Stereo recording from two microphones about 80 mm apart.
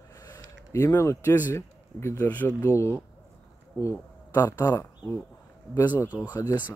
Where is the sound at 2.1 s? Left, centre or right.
Left.